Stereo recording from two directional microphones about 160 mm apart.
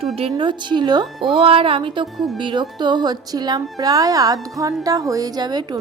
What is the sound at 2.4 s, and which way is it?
A woman's voice, 30° right (ahead or behind).